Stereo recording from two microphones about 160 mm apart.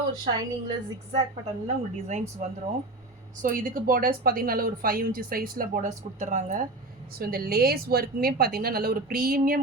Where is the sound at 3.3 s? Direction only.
55° right (ahead or behind).